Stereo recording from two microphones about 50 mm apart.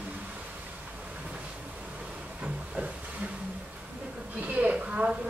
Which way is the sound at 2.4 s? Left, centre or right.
Right.